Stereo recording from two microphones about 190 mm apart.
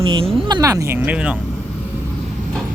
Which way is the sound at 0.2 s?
20° right (ahead or behind).